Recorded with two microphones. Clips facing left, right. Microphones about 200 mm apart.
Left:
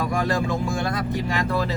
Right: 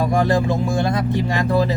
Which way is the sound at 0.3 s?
20° right (ahead or behind).